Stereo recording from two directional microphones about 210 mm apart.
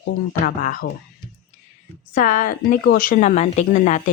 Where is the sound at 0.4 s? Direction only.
40° left (ahead or behind).